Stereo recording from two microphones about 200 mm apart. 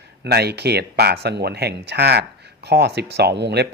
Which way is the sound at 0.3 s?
55° right (ahead or behind).